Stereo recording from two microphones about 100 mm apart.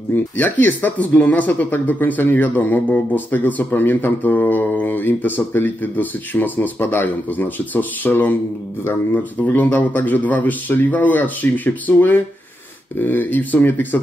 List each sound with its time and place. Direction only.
0.1 s speech: 20° left (ahead or behind)